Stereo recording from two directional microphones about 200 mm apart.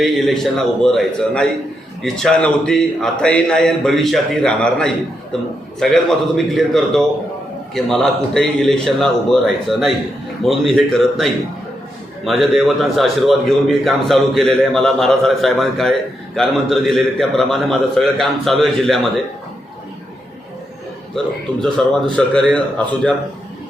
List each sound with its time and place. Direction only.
0.0 s a man's voice: centre (ahead or behind)
21.6 s a man's voice: 5° left (ahead or behind)